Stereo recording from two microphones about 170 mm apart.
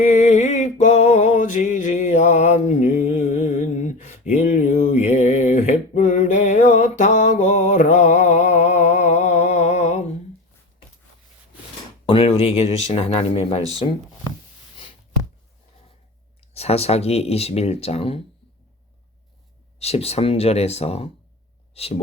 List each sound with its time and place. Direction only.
0.0 s a sound: 45° left (ahead or behind)
12.0 s speech: 35° left (ahead or behind)
16.6 s speech: 35° left (ahead or behind)
19.8 s speech: 35° left (ahead or behind)